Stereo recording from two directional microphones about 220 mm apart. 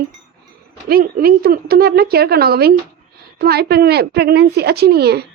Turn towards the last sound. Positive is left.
turn(degrees=-45)  # may be behind; listen again after turning